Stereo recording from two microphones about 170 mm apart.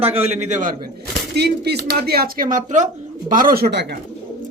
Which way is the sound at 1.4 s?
70° right (ahead or behind).